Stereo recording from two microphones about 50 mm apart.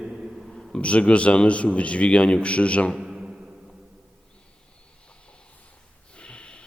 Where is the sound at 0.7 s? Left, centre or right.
Left.